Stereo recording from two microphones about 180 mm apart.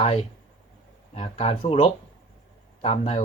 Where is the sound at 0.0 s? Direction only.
35° left (ahead or behind).